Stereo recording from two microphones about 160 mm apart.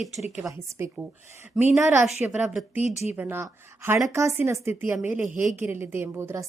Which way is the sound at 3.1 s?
15° right (ahead or behind).